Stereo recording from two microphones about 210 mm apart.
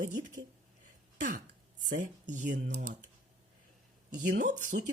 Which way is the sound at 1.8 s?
40° right (ahead or behind).